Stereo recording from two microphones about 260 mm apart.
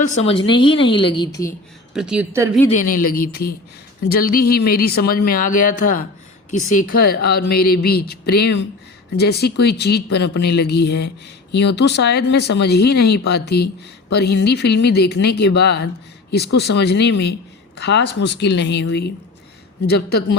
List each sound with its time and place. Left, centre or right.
0.0 s a woman's voice: left
1.9 s speech: centre
2.6 s speech: left